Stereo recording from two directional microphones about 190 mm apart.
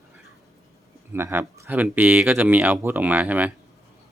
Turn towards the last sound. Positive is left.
turn(degrees=-10)  # may be behind; listen again after turning